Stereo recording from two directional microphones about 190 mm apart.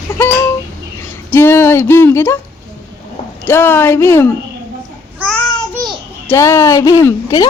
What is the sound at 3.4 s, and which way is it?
Speech, 10° left (ahead or behind).